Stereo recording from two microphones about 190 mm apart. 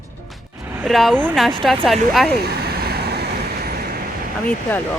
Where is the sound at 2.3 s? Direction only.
55° right (ahead or behind).